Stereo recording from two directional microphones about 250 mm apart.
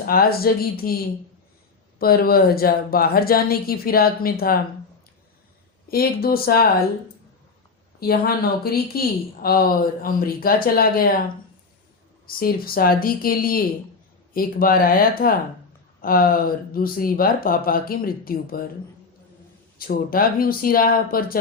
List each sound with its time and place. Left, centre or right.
0.0 s speech: left
5.9 s speech: left
7.9 s speech: left
12.2 s speech: left
19.8 s speech: left